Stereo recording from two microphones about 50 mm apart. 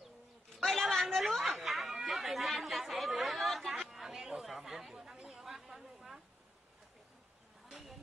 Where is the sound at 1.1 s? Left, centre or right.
Centre.